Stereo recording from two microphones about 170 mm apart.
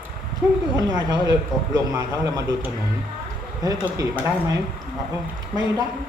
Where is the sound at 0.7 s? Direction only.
20° right (ahead or behind).